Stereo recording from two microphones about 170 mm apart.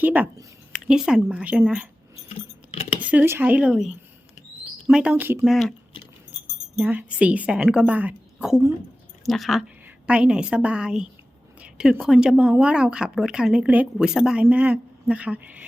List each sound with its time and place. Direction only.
0.0 s a woman's voice: 10° right (ahead or behind)
3.0 s a woman's voice: 10° right (ahead or behind)
5.5 s speech: centre (ahead or behind)
6.7 s a woman's voice: 10° right (ahead or behind)